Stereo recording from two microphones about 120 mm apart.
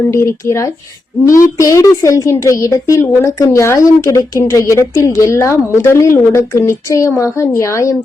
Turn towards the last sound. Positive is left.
turn(degrees=25)  # may be behind; listen again after turning